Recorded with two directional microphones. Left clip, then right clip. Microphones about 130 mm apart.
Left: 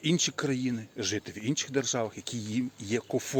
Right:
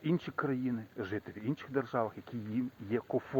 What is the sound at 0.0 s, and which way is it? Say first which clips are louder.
A man's voice: left 6 dB; 20° left (ahead or behind).